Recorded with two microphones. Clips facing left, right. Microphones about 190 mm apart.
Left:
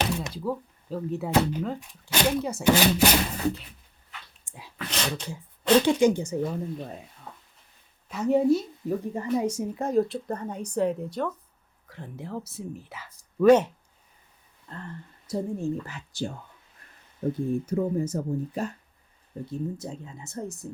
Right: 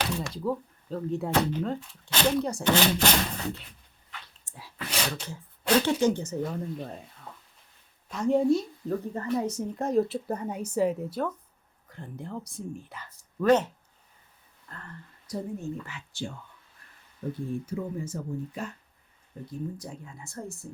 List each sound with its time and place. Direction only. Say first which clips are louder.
0.3 s speech: even; centre (ahead or behind)
1.8 s speech: left 1 dB; 15° left (ahead or behind)
4.4 s dog: left 1 dB; 15° left (ahead or behind)
4.9 s speech: left 1 dB; 10° right (ahead or behind)
5.8 s speech: left 4 dB; 15° left (ahead or behind)
8.1 s speech: left 1 dB; 5° left (ahead or behind)
9.7 s speech: right 1 dB; centre (ahead or behind)
14.7 s speech: left 6 dB; 25° left (ahead or behind)
19.5 s speech: left 3 dB; 25° left (ahead or behind)